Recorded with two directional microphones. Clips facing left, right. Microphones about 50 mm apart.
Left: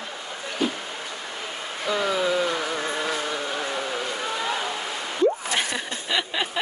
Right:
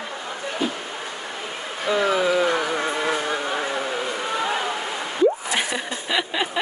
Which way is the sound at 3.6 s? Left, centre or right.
Centre.